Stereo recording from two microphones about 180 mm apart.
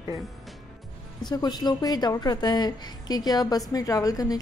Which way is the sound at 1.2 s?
25° left (ahead or behind).